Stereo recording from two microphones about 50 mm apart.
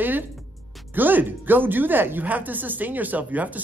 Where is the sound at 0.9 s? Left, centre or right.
Right.